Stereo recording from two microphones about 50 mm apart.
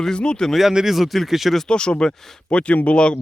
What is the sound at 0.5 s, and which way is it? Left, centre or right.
Speech, centre.